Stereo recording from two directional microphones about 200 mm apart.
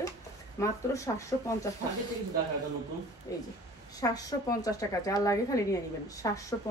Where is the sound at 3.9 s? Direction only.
20° left (ahead or behind).